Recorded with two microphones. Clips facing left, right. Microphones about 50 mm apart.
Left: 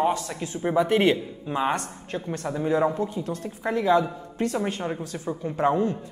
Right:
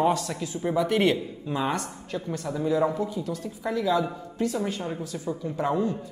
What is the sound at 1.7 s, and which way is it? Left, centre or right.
Speech, left.